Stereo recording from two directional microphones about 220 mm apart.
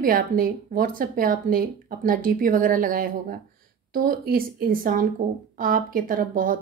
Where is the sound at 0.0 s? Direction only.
40° right (ahead or behind).